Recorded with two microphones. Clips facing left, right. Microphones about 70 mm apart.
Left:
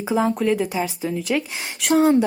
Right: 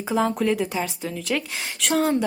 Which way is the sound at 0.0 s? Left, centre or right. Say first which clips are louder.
Left 2 dB; centre.